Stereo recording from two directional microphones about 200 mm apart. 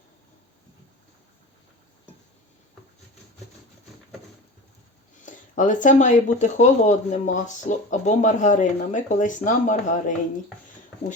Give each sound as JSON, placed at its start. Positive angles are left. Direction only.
{"t": 5.2, "sound": "speech", "side_deg": 40}